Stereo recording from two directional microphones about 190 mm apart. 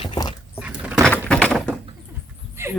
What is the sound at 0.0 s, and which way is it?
Dog, 25° left (ahead or behind).